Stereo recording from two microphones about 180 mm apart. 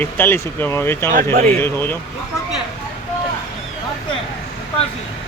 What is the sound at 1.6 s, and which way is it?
Speech, 15° left (ahead or behind).